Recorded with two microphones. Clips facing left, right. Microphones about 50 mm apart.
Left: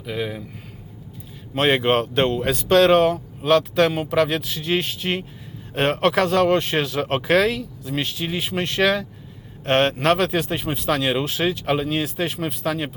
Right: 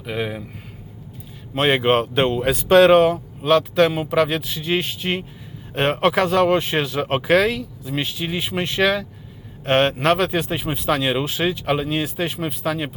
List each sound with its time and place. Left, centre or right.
0.0 s speech: centre
1.5 s speech: centre